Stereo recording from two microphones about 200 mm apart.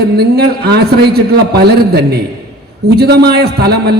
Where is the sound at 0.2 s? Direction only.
55° right (ahead or behind).